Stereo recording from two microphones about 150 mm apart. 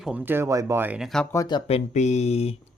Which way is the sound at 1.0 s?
5° left (ahead or behind).